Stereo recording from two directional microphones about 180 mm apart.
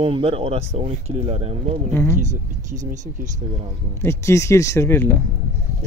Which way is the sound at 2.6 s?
45° right (ahead or behind).